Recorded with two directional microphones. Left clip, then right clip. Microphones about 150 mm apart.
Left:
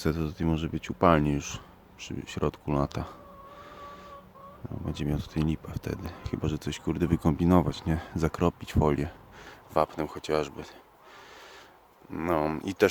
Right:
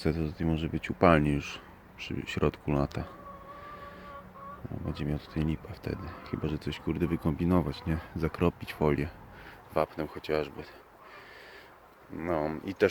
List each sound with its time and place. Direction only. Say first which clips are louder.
0.0 s speech: left 1 dB; 30° left (ahead or behind)
4.9 s speech: left 3 dB; 35° left (ahead or behind)
8.4 s speech: left 1 dB; 25° left (ahead or behind)
12.1 s speech: left 4 dB; 50° left (ahead or behind)